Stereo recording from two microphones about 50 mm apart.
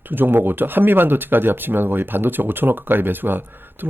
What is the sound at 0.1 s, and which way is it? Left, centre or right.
Speech, right.